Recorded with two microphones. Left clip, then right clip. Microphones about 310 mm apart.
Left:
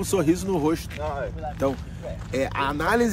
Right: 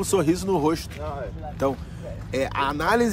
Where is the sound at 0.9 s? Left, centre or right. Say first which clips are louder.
Left 3 dB; left.